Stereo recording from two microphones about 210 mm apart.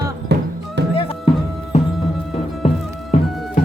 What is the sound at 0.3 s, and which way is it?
Music, 50° right (ahead or behind).